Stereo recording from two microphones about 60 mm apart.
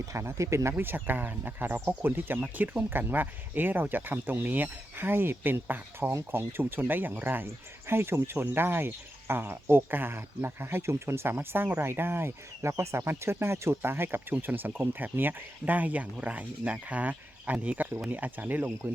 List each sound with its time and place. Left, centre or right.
0.1 s speech: right
0.8 s speech: right
6.6 s speech: right